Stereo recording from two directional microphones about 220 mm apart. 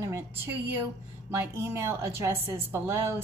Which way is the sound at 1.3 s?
10° right (ahead or behind).